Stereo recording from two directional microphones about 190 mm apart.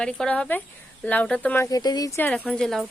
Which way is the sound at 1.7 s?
20° left (ahead or behind).